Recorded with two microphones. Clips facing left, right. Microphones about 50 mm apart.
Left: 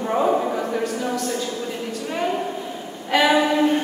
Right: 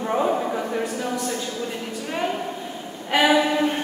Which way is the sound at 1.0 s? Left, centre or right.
Centre.